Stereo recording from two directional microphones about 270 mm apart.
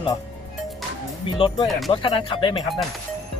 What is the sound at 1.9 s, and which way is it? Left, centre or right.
Speech, centre.